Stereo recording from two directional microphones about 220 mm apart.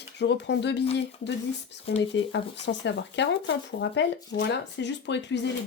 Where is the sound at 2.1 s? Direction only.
55° left (ahead or behind).